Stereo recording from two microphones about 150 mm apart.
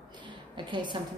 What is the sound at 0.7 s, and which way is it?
Speech, 30° right (ahead or behind).